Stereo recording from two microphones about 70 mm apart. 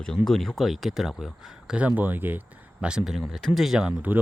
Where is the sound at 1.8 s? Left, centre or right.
Right.